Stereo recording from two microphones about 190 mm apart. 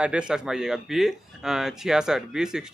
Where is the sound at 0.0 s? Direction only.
5° right (ahead or behind).